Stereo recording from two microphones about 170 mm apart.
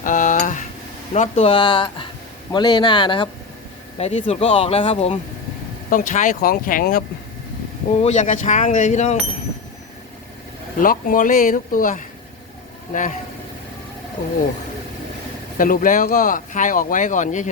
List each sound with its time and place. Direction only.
0.0 s a sound: 50° left (ahead or behind)
1.1 s speech: 40° left (ahead or behind)
5.9 s speech: 50° left (ahead or behind)
8.0 s speech: 45° left (ahead or behind)
10.8 s speech: 55° left (ahead or behind)
15.5 s speech: 55° left (ahead or behind)